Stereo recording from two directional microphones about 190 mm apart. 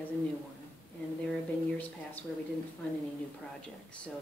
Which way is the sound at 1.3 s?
10° left (ahead or behind).